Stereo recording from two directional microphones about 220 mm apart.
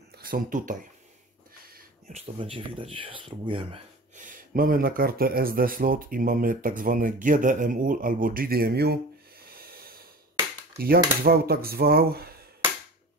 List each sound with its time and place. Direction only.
0.1 s speech: 40° right (ahead or behind)
1.7 s a sound: 40° right (ahead or behind)
2.3 s speech: 25° right (ahead or behind); by 12.4 s 45° right (ahead or behind)